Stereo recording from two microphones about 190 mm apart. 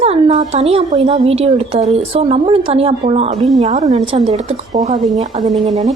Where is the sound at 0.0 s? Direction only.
35° right (ahead or behind).